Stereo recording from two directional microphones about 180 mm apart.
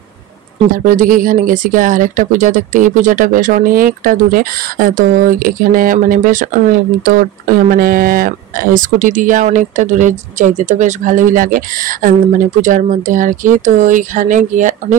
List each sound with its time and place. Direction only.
0.7 s speech: 45° right (ahead or behind)